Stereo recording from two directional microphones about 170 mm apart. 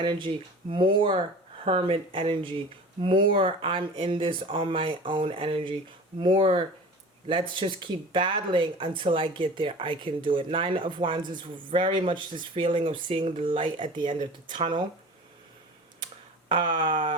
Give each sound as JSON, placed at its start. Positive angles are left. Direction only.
{"t": 0.0, "sound": "speech", "side_deg": -30}
{"t": 16.5, "sound": "speech", "side_deg": -30}